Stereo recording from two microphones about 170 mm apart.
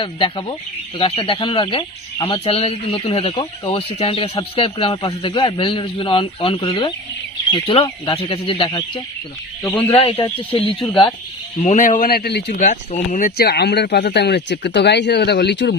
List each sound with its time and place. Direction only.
0.0 s a man's voice: 30° left (ahead or behind)
10.5 s speech: 30° left (ahead or behind)
11.6 s speech: 45° left (ahead or behind); by 12.5 s 70° left (ahead or behind)
12.5 s speech: 45° left (ahead or behind); by 15.7 s 90° left